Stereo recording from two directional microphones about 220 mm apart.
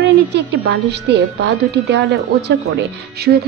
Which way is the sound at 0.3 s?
50° right (ahead or behind).